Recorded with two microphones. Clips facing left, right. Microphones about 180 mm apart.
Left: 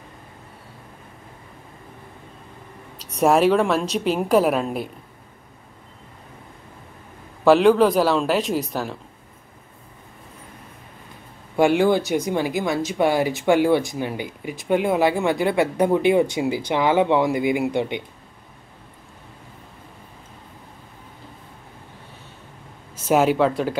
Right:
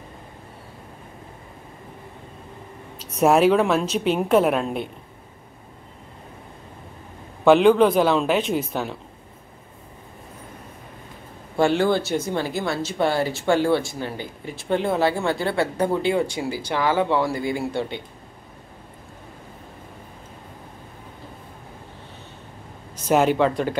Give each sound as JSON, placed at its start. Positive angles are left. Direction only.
{"t": 3.2, "sound": "a woman's voice", "side_deg": 0}
{"t": 7.4, "sound": "a woman's voice", "side_deg": 0}
{"t": 11.5, "sound": "speech", "side_deg": 15}
{"t": 23.0, "sound": "a woman's voice", "side_deg": 5}